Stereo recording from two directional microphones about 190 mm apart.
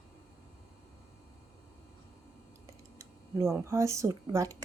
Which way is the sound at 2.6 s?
15° right (ahead or behind).